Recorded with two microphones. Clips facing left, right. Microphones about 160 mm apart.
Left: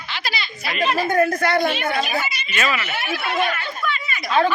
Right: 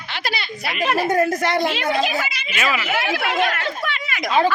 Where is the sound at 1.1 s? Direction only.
20° right (ahead or behind).